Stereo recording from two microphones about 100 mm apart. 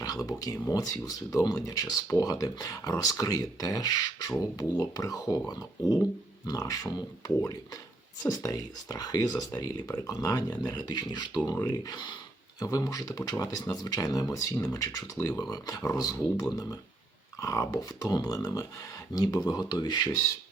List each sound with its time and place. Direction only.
0.0 s speech: 40° left (ahead or behind)
8.3 s speech: 35° left (ahead or behind)